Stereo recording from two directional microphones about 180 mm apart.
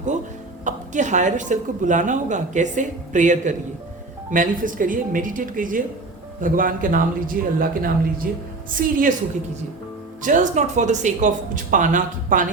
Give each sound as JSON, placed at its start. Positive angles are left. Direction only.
{"t": 0.6, "sound": "a woman's voice", "side_deg": -40}
{"t": 10.2, "sound": "a woman's voice", "side_deg": -45}